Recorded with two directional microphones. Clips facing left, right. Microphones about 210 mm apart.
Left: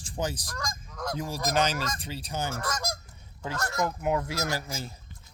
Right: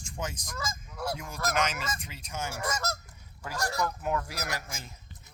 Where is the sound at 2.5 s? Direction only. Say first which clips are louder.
Left 1 dB; 10° right (ahead or behind).